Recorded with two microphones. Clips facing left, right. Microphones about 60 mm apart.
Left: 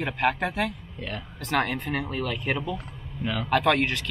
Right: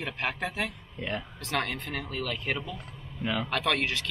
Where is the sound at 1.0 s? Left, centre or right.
Centre.